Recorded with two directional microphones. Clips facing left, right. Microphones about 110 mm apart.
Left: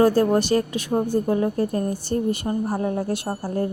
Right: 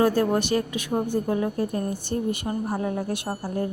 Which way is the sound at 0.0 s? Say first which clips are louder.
Left 4 dB; 30° left (ahead or behind).